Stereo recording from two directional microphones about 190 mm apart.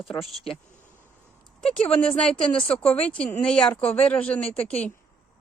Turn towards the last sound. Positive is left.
turn(degrees=30)  # may be behind; listen again after turning